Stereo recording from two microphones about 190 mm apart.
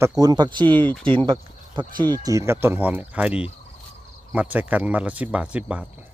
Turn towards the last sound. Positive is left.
turn(degrees=-5)  # may be behind; listen again after turning